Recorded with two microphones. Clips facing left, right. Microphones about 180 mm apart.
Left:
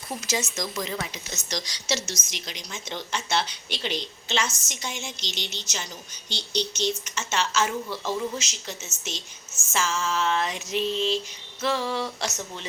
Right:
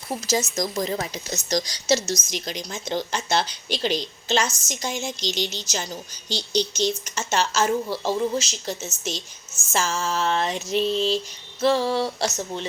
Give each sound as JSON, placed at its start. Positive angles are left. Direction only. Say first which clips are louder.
{"t": 0.3, "sound": "a woman's voice", "louder": "right 6 dB", "side_deg": -40}